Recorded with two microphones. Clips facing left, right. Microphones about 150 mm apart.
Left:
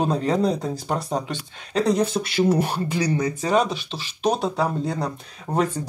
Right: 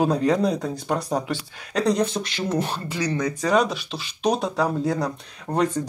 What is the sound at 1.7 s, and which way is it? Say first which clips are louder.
Speech: left 1 dB; 5° left (ahead or behind).